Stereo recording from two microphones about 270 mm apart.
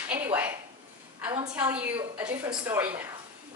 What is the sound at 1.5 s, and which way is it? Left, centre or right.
A woman's voice, centre.